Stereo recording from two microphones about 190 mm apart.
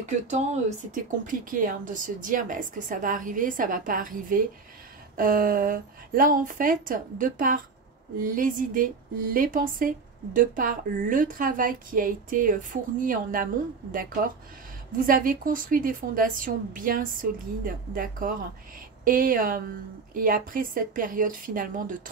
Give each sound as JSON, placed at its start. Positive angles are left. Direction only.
{"t": 0.0, "sound": "speech", "side_deg": -40}
{"t": 15.0, "sound": "speech", "side_deg": -50}